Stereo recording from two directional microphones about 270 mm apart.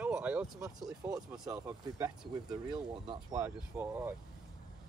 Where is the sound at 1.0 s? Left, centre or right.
Centre.